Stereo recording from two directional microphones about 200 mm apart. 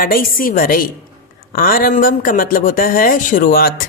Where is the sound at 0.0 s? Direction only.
45° left (ahead or behind).